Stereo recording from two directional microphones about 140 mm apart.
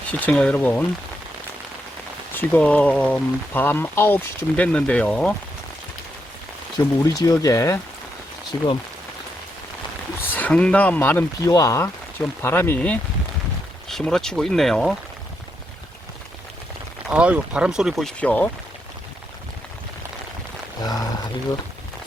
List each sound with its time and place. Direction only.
0.1 s speech: 10° left (ahead or behind)
2.3 s speech: 15° left (ahead or behind)
6.7 s speech: 25° left (ahead or behind)
10.3 s speech: 10° left (ahead or behind)
11.4 s speech: 20° left (ahead or behind); by 14.9 s centre (ahead or behind)
17.1 s speech: 10° right (ahead or behind); by 18.5 s 10° left (ahead or behind)
20.8 s speech: 25° left (ahead or behind)